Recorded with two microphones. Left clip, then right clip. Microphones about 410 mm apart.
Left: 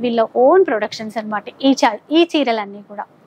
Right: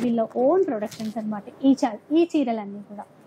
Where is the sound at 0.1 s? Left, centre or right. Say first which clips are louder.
Left 9 dB; centre.